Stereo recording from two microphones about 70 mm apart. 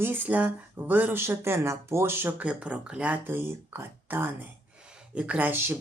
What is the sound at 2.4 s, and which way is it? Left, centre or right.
Speech, centre.